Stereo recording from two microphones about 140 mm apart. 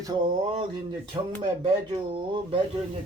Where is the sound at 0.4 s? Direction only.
40° right (ahead or behind).